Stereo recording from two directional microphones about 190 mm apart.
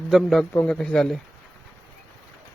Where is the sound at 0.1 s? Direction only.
Centre (ahead or behind).